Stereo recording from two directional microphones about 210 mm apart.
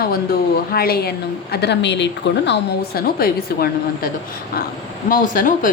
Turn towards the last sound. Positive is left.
turn(degrees=40)  # may be behind; listen again after turning